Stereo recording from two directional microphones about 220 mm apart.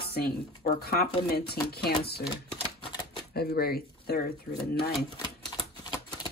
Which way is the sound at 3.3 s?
45° left (ahead or behind).